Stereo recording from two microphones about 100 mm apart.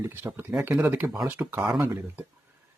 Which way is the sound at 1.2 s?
25° right (ahead or behind).